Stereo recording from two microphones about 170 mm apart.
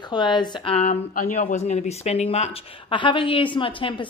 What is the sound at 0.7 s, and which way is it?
Speech, 50° left (ahead or behind).